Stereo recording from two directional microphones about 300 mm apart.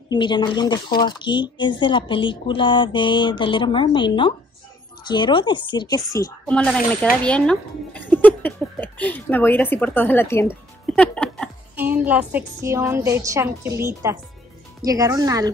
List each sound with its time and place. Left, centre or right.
0.1 s speech: centre